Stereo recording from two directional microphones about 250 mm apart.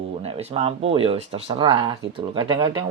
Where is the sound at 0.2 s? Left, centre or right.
Right.